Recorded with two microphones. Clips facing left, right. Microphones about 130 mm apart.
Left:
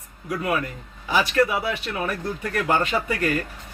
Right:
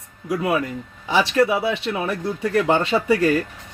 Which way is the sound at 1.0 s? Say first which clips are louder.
Right 3 dB; 25° right (ahead or behind).